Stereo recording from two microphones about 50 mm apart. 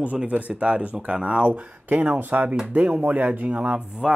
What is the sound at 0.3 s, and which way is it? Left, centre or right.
Speech, right.